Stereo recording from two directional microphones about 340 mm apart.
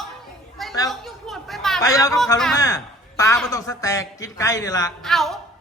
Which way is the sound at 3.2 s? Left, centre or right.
Centre.